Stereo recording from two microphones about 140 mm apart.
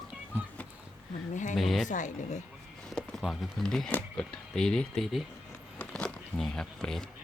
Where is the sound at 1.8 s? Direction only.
60° left (ahead or behind).